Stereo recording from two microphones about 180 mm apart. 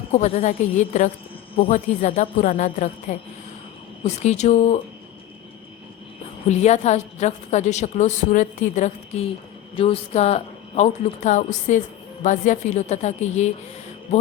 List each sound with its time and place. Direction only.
0.1 s a woman's voice: 35° left (ahead or behind)
6.5 s a woman's voice: 40° left (ahead or behind)
14.1 s mantra: 40° left (ahead or behind)